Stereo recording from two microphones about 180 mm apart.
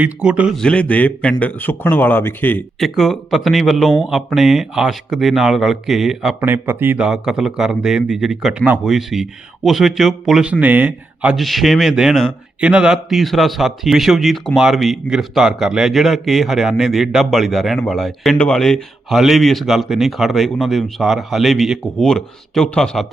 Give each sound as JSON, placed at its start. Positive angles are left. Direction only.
{"t": 0.0, "sound": "a man's voice", "side_deg": -5}